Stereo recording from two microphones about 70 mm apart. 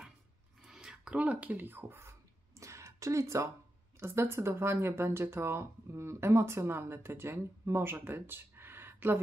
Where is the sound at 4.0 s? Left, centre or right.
Right.